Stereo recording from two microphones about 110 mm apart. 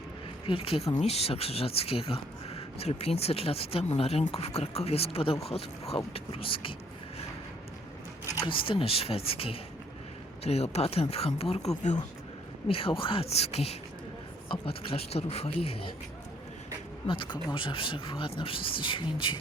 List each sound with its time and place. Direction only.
0.4 s speech: 55° left (ahead or behind)
0.9 s speech: 70° left (ahead or behind); by 6.7 s 55° left (ahead or behind)
8.4 s speech: 50° left (ahead or behind)
10.4 s speech: 75° left (ahead or behind)
14.5 s speech: 55° left (ahead or behind)
17.1 s speech: 50° left (ahead or behind)